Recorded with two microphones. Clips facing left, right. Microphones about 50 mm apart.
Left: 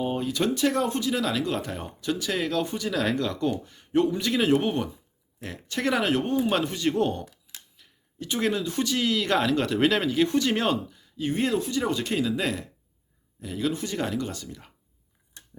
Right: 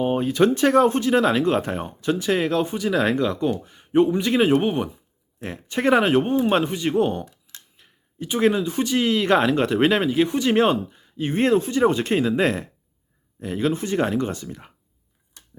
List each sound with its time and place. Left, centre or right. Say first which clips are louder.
0.0 s speech: right 7 dB; right